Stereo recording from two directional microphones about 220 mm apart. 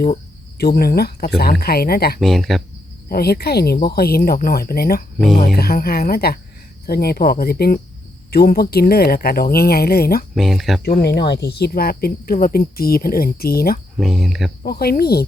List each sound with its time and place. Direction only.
0.6 s speech: 45° left (ahead or behind)
2.2 s speech: centre (ahead or behind)
3.1 s speech: 45° left (ahead or behind)
5.1 s speech: centre (ahead or behind)
5.4 s speech: 40° left (ahead or behind)
10.3 s speech: centre (ahead or behind)
10.8 s speech: 45° left (ahead or behind)
14.0 s speech: centre (ahead or behind)
14.6 s speech: 45° left (ahead or behind)